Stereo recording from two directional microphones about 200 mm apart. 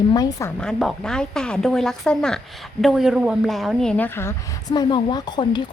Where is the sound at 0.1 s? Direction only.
20° left (ahead or behind).